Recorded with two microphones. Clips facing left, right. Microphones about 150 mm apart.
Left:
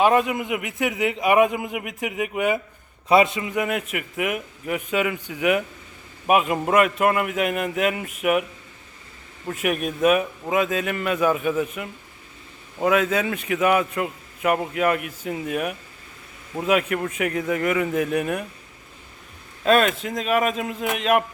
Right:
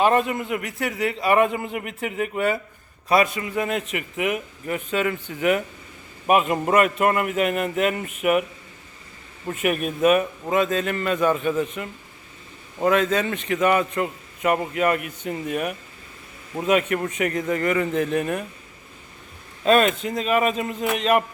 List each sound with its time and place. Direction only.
0.0 s a man's voice: 5° left (ahead or behind)
3.1 s a man's voice: 20° left (ahead or behind); by 8.4 s centre (ahead or behind)
9.5 s a man's voice: centre (ahead or behind)
19.6 s a man's voice: centre (ahead or behind)